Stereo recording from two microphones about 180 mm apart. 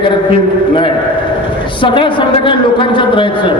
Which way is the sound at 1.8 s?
25° left (ahead or behind).